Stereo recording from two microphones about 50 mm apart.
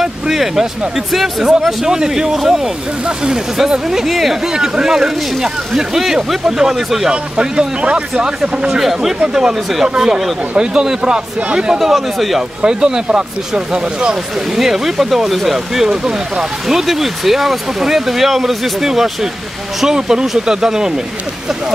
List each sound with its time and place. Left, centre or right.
0.0 s speech: centre
7.1 s speech: centre
11.8 s speech: centre
12.6 s speech: centre